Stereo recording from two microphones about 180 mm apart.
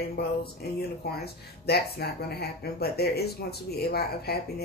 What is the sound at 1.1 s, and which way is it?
Speech, 60° left (ahead or behind).